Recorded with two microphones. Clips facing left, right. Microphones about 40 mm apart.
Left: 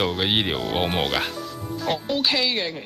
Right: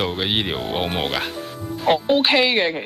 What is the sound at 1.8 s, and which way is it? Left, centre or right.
Speech, right.